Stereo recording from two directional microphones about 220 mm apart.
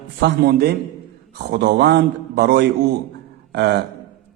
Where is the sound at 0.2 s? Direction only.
45° right (ahead or behind).